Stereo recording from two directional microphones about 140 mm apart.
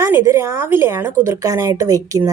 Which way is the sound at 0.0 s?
20° right (ahead or behind).